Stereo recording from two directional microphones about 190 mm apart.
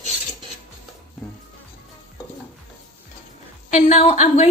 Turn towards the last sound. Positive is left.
turn(degrees=35)  # may be behind; listen again after turning